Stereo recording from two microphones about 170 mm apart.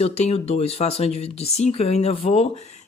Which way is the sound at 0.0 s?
35° left (ahead or behind).